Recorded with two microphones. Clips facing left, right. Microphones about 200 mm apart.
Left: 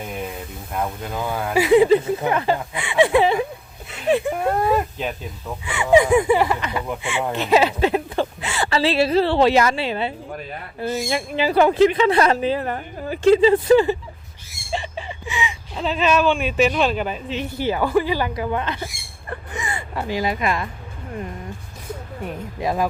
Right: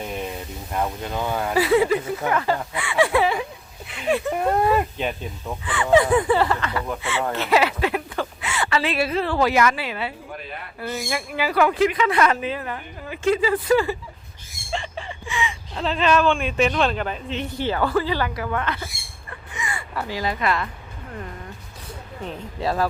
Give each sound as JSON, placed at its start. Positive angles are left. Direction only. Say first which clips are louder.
{"t": 0.0, "sound": "speech", "louder": "even", "side_deg": 5}
{"t": 1.5, "sound": "speech", "louder": "left 5 dB", "side_deg": 15}
{"t": 4.1, "sound": "speech", "louder": "left 2 dB", "side_deg": 10}
{"t": 14.7, "sound": "a sound", "louder": "left 2 dB", "side_deg": 5}
{"t": 15.3, "sound": "whimper", "louder": "even", "side_deg": 20}
{"t": 15.7, "sound": "speech", "louder": "left 1 dB", "side_deg": 5}
{"t": 22.2, "sound": "speech", "louder": "even", "side_deg": 15}